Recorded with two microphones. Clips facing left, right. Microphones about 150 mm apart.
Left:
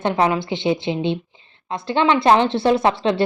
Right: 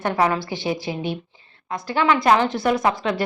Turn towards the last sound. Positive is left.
turn(degrees=30)  # may be behind; listen again after turning